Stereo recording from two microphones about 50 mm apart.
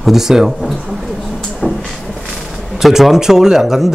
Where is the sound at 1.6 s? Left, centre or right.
Centre.